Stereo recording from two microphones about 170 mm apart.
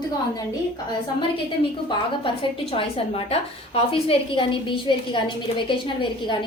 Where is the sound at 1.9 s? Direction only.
30° left (ahead or behind).